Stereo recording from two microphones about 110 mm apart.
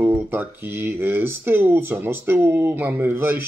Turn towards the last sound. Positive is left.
turn(degrees=-20)  # may be behind; listen again after turning